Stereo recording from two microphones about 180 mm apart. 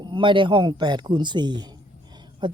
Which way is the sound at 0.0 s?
25° right (ahead or behind).